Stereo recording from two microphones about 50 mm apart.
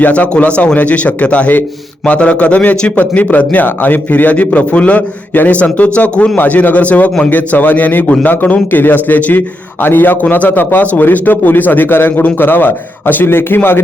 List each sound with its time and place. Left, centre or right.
0.0 s a man's voice: left